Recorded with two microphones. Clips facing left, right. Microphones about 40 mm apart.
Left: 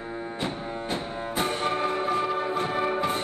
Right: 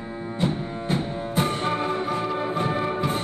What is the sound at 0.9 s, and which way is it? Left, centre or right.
Music, centre.